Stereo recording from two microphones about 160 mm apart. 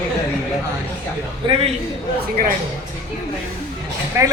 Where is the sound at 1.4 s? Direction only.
30° right (ahead or behind).